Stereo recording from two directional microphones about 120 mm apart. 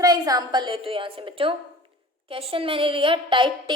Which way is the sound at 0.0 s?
30° right (ahead or behind).